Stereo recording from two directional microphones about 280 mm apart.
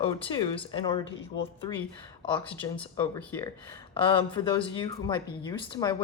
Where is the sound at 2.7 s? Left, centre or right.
Centre.